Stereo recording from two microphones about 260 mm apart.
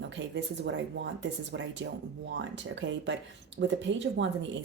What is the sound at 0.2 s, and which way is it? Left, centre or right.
Speech, right.